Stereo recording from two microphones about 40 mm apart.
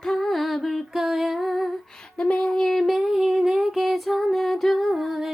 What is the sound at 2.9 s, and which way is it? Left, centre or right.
Female singing, centre.